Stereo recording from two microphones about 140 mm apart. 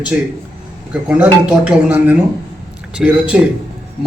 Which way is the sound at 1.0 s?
10° right (ahead or behind).